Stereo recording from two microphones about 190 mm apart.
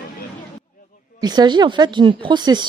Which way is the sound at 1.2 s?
20° right (ahead or behind).